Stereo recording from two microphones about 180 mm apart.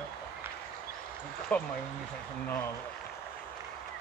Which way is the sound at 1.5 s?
10° left (ahead or behind).